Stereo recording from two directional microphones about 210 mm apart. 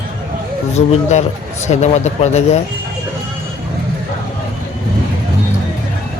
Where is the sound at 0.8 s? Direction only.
30° left (ahead or behind).